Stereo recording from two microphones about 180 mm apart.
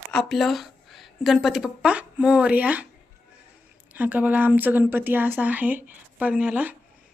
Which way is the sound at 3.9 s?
10° right (ahead or behind).